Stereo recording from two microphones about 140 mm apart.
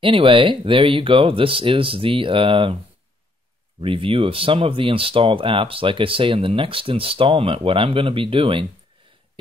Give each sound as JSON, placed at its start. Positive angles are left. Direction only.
{"t": 0.0, "sound": "speech", "side_deg": -40}
{"t": 3.8, "sound": "speech", "side_deg": -40}